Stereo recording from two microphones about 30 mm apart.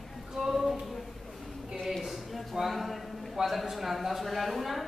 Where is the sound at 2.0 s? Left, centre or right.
Centre.